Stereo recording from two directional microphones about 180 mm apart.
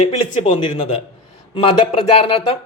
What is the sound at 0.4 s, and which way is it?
Speech, 25° left (ahead or behind).